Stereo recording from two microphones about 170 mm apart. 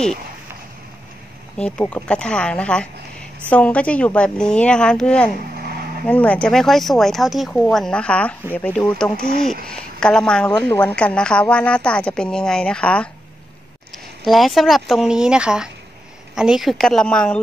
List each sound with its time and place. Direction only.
1.6 s a woman's voice: 5° left (ahead or behind)
5.6 s a sound: 65° right (ahead or behind)
6.0 s a woman's voice: 10° left (ahead or behind)